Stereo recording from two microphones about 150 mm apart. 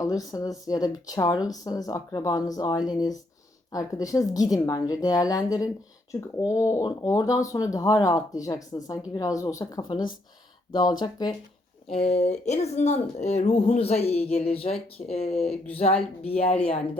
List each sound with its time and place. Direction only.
0.0 s speech: 20° left (ahead or behind)
11.9 s speech: 45° left (ahead or behind)